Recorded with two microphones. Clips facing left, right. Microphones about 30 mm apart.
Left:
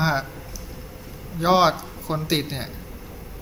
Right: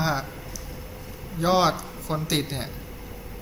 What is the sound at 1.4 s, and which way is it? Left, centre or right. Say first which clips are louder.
Speech: left 3 dB; centre.